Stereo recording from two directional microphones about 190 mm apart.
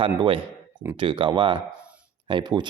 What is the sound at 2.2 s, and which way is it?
Speech, 25° right (ahead or behind).